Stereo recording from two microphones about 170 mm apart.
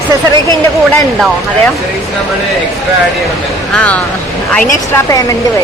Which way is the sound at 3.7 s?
10° left (ahead or behind).